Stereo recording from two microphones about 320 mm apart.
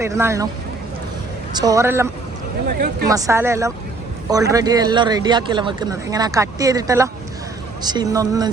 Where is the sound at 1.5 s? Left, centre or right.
Centre.